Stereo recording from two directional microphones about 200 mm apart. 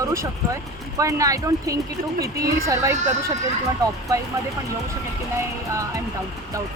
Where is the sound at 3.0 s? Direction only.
35° right (ahead or behind).